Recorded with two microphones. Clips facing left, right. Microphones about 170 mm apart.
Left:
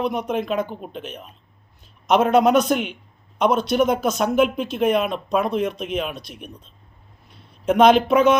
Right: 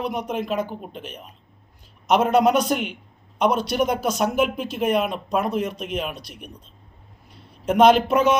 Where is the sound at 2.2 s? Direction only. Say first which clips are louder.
Left 3 dB; 10° right (ahead or behind).